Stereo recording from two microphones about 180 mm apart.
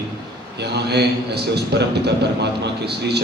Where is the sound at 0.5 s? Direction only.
70° right (ahead or behind).